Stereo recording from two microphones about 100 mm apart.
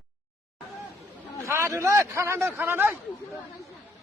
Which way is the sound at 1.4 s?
25° right (ahead or behind).